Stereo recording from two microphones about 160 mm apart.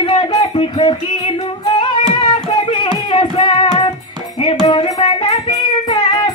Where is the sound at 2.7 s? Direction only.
30° left (ahead or behind).